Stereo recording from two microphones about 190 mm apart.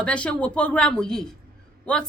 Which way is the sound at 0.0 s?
5° left (ahead or behind).